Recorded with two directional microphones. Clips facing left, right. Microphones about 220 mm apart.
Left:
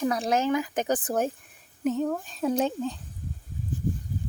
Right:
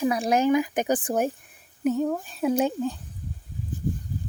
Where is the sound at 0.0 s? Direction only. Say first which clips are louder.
Right 3 dB; 10° right (ahead or behind).